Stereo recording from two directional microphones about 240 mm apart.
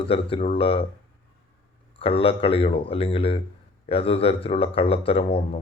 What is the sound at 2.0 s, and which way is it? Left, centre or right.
Speech, left.